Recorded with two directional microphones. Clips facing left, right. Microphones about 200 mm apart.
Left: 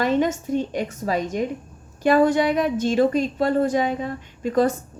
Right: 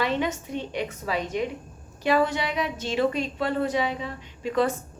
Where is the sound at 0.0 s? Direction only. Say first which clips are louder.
Left 6 dB; 45° left (ahead or behind).